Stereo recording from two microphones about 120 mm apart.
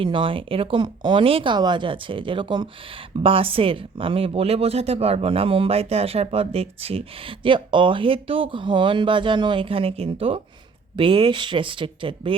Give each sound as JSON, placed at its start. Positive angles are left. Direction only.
{"t": 0.0, "sound": "speech", "side_deg": -45}
{"t": 1.5, "sound": "speech", "side_deg": -40}